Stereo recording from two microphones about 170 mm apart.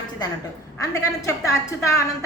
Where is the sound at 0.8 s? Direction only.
20° left (ahead or behind).